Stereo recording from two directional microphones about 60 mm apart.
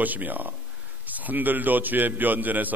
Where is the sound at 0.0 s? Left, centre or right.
Right.